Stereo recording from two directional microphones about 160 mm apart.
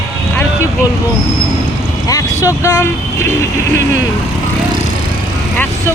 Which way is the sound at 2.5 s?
20° left (ahead or behind).